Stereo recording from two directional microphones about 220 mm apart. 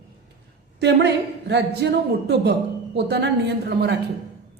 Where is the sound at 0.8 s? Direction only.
50° right (ahead or behind).